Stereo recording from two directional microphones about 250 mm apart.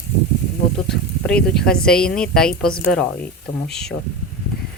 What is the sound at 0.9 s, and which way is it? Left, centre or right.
A woman's voice, centre.